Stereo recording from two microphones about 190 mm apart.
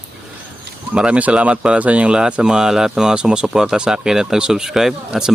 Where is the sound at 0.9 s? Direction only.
5° right (ahead or behind).